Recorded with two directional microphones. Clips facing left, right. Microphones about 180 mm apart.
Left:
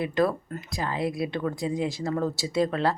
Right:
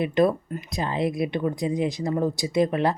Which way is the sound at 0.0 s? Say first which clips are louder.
Right 4 dB; 20° right (ahead or behind).